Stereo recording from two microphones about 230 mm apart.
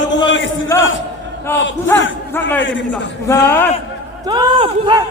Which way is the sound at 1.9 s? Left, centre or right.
Centre.